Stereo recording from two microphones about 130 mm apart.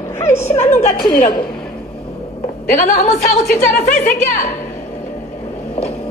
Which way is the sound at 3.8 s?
70° left (ahead or behind).